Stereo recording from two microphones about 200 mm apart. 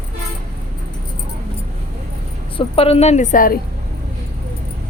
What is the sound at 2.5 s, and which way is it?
A woman's voice, 25° left (ahead or behind).